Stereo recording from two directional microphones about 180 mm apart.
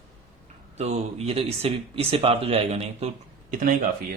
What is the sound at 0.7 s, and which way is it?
Speech, 35° right (ahead or behind).